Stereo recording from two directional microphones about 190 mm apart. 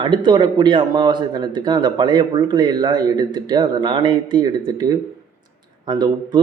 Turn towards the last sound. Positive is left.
turn(degrees=-25)  # may be behind; listen again after turning